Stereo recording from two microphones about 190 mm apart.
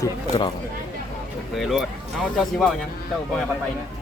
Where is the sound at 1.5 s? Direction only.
Centre (ahead or behind).